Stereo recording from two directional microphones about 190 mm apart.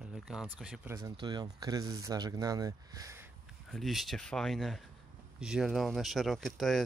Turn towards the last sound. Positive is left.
turn(degrees=0)  # may be behind; listen again after turning